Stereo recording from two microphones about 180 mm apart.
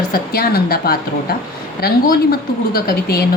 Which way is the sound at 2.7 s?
60° left (ahead or behind).